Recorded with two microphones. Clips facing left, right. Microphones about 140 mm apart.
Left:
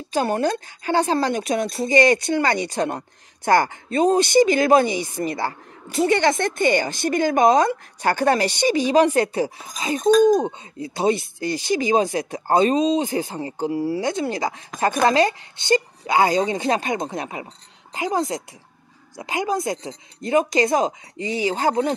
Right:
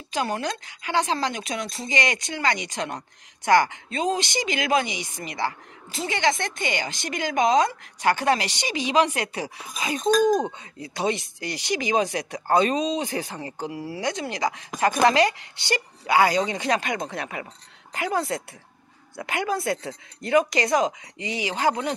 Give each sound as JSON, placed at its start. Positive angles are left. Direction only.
{"t": 0.1, "sound": "speech", "side_deg": 35}
{"t": 1.7, "sound": "speech", "side_deg": 50}
{"t": 2.5, "sound": "speech", "side_deg": 35}
{"t": 3.4, "sound": "speech", "side_deg": 45}
{"t": 5.9, "sound": "speech", "side_deg": 55}
{"t": 8.0, "sound": "speech", "side_deg": 40}